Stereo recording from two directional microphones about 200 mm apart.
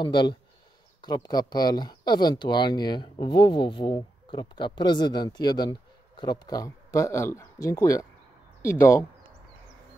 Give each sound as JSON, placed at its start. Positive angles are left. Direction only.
{"t": 0.0, "sound": "speech", "side_deg": 20}